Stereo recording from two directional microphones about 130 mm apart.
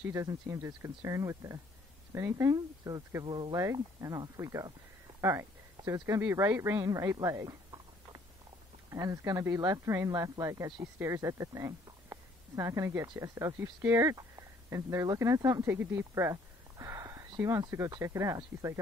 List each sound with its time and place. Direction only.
0.0 s speech: 25° right (ahead or behind)
5.2 s a sound: 20° right (ahead or behind)
6.0 s speech: 25° right (ahead or behind)